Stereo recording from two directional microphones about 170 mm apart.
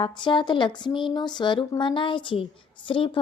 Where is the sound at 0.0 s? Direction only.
30° left (ahead or behind).